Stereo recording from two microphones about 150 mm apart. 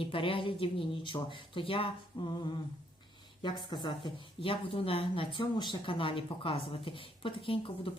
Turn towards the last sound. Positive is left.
turn(degrees=35)  # may be behind; listen again after turning